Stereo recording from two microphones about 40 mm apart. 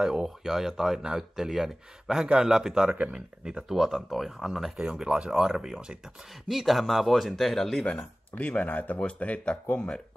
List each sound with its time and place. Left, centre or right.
0.0 s speech: centre
2.2 s speech: centre
3.6 s speech: centre
4.8 s speech: right
5.3 s speech: centre
6.4 s speech: centre
7.8 s speech: left